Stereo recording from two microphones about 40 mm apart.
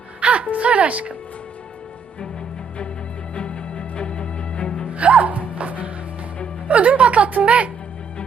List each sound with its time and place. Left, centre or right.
0.2 s a woman's voice: right
3.3 s music: left
4.9 s music: right
6.7 s a woman's voice: right